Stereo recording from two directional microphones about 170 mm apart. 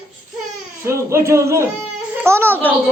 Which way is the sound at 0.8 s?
15° right (ahead or behind).